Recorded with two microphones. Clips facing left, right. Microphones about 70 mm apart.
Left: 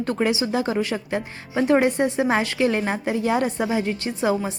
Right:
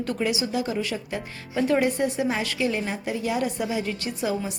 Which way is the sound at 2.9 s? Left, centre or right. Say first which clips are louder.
Left 5 dB; left.